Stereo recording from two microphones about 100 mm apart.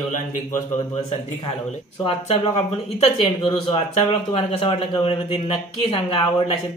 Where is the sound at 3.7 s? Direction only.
75° left (ahead or behind).